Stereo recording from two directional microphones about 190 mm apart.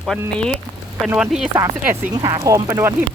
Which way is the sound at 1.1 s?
5° right (ahead or behind).